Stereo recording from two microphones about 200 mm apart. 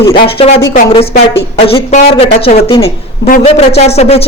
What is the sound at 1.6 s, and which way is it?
Speech, 30° left (ahead or behind).